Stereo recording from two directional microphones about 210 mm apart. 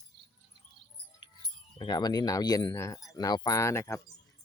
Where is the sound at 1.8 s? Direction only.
20° left (ahead or behind).